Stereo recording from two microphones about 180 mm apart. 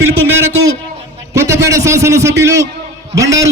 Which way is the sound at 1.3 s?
15° right (ahead or behind).